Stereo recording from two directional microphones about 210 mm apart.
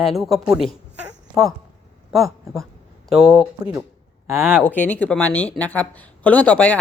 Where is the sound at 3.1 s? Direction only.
Centre (ahead or behind).